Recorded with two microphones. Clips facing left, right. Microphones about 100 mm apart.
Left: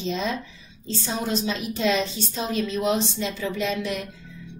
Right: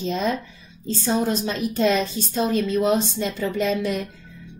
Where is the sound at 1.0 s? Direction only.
45° right (ahead or behind).